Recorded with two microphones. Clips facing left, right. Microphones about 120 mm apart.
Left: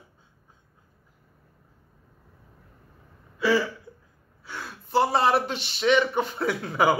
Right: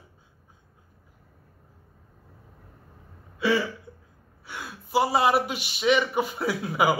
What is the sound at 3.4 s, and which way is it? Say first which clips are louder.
Hiccup: left 1 dB; 20° right (ahead or behind).